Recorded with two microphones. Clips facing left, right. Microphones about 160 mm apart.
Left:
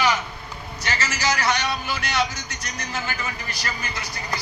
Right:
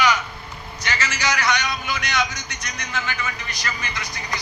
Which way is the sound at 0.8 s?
30° left (ahead or behind).